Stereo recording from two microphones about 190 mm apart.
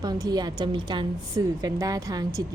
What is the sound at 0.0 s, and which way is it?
A woman's voice, 20° right (ahead or behind).